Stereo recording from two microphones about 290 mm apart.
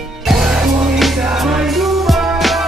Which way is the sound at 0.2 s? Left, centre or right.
Centre.